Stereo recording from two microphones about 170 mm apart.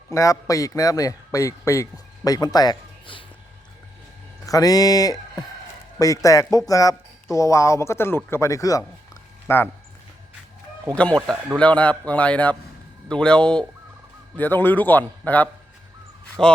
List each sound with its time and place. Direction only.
0.1 s a man's voice: 20° left (ahead or behind)
4.4 s a man's voice: 20° left (ahead or behind)
10.8 s speech: 5° left (ahead or behind)